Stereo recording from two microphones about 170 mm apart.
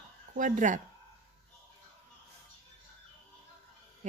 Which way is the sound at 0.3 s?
50° right (ahead or behind).